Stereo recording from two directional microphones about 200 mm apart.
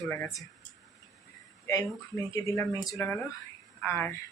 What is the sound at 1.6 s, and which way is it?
Speech, 15° left (ahead or behind).